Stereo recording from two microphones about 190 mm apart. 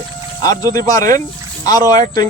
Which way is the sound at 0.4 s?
20° left (ahead or behind).